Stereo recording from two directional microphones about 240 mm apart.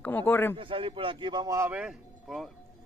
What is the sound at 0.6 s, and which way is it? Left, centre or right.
A woman's voice, right.